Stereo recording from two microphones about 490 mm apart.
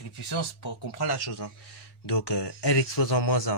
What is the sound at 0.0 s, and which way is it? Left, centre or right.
Speech, left.